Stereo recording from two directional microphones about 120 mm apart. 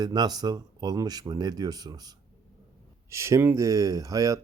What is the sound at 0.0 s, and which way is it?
Speech, 35° right (ahead or behind).